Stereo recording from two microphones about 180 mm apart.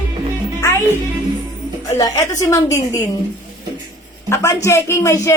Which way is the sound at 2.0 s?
20° left (ahead or behind).